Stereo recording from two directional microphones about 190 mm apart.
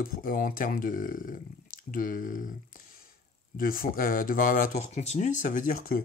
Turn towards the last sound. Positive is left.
turn(degrees=50)  # may be behind; listen again after turning